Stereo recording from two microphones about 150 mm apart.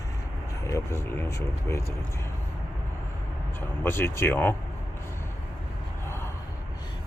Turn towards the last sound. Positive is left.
turn(degrees=15)  # may be behind; listen again after turning